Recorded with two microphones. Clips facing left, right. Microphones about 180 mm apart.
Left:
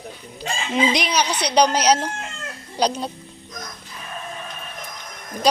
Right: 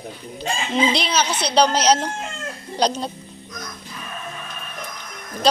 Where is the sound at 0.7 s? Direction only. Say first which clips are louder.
Even; 10° left (ahead or behind).